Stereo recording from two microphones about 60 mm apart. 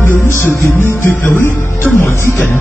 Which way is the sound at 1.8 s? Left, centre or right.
Centre.